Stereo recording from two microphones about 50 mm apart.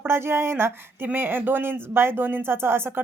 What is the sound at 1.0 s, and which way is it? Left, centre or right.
A woman's voice, right.